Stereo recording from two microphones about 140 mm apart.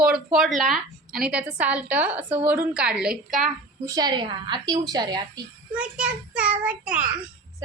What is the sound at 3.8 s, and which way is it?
A woman's voice, 25° right (ahead or behind).